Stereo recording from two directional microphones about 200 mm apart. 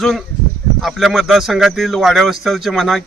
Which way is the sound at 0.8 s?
Centre (ahead or behind).